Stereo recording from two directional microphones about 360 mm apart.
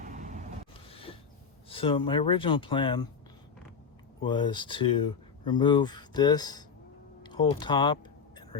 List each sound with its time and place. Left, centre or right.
0.0 s vehicle: right
1.7 s speech: centre
4.2 s speech: centre